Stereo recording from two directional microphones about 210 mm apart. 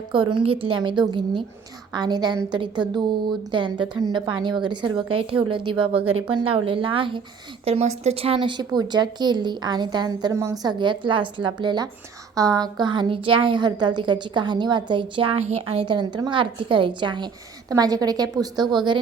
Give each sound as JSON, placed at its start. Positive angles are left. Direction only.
{"t": 0.1, "sound": "a woman's voice", "side_deg": -25}